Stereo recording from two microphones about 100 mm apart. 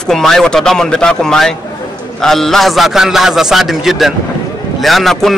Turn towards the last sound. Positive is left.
turn(degrees=0)  # may be behind; listen again after turning